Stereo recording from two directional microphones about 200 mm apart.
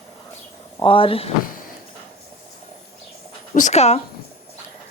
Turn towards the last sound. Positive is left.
turn(degrees=30)  # may be behind; listen again after turning